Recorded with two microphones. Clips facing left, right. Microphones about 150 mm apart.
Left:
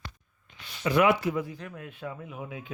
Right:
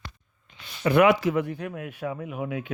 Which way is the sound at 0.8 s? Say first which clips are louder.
Right 4 dB; 60° right (ahead or behind).